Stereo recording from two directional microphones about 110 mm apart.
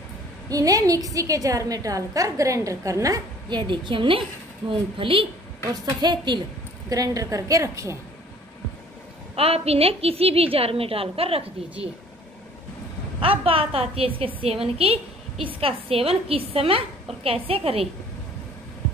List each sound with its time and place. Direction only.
0.5 s a woman's voice: 30° right (ahead or behind)
3.4 s a woman's voice: 45° right (ahead or behind)
5.7 s a woman's voice: 35° right (ahead or behind)
9.3 s a woman's voice: 65° right (ahead or behind)
13.2 s a woman's voice: 55° right (ahead or behind)